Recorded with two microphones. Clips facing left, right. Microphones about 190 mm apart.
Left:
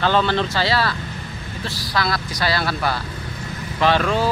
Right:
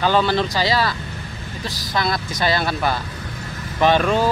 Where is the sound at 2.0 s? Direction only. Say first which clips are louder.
Right 1 dB; 20° right (ahead or behind).